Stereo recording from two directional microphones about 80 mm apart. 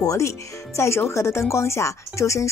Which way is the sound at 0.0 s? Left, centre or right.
Left.